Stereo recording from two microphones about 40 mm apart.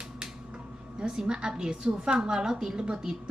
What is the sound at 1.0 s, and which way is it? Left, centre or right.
A woman's voice, centre.